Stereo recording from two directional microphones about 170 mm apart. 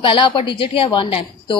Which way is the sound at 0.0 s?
30° left (ahead or behind).